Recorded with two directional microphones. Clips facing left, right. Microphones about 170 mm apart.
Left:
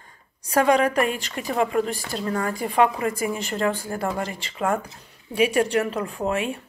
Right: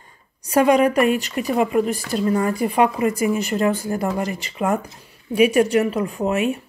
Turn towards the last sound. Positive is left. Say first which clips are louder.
# right 4 dB
turn(degrees=-10)  # may be behind; listen again after turning